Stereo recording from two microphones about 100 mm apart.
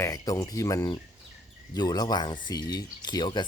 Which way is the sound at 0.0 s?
35° left (ahead or behind).